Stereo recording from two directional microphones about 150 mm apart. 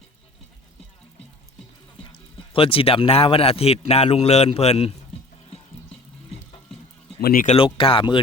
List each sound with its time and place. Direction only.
2.5 s speech: 40° left (ahead or behind)
7.2 s speech: 85° left
7.4 s speech: 40° left (ahead or behind)